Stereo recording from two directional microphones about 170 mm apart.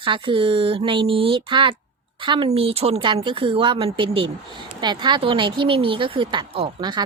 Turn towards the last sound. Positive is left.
turn(degrees=-30)  # may be behind; listen again after turning